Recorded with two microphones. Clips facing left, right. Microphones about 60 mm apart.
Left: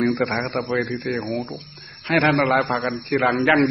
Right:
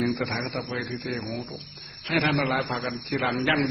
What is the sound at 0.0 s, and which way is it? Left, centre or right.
A man's voice, left.